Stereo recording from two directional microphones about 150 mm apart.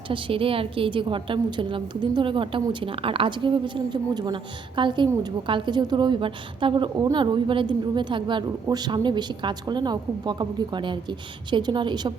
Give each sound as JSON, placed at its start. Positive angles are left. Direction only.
{"t": 0.1, "sound": "a woman's voice", "side_deg": -35}